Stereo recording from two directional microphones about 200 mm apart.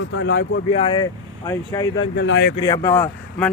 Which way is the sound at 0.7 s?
25° left (ahead or behind).